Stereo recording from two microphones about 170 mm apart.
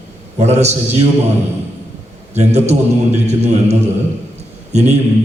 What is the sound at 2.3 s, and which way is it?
A man's voice, 40° right (ahead or behind).